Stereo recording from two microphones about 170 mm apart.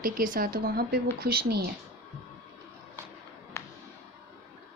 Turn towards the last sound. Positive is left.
turn(degrees=15)  # may be behind; listen again after turning